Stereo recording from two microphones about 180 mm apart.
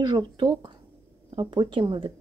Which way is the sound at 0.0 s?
25° right (ahead or behind).